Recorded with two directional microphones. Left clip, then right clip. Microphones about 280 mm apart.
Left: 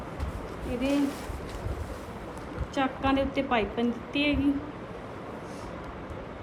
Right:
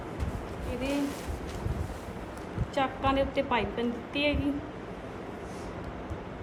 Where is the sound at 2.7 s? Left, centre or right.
Centre.